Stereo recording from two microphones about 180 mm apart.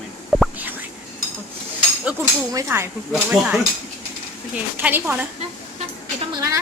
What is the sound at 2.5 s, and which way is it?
Speech, 15° right (ahead or behind).